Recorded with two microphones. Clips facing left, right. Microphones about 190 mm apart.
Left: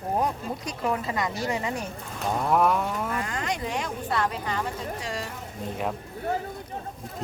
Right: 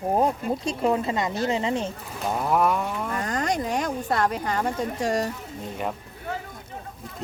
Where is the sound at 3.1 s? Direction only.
40° right (ahead or behind).